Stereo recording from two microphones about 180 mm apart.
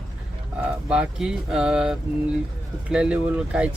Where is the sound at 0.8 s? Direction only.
5° right (ahead or behind).